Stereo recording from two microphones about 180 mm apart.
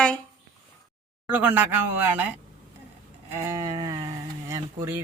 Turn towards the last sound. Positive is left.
turn(degrees=-15)  # may be behind; listen again after turning